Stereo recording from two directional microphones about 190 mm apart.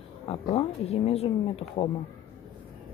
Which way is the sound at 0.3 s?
35° left (ahead or behind).